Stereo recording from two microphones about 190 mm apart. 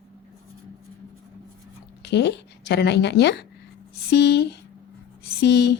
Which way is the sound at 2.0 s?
65° left (ahead or behind).